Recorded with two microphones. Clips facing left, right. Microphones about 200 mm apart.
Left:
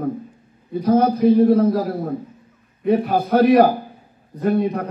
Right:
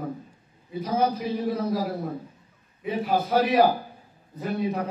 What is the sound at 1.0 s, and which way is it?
Speech, 50° left (ahead or behind).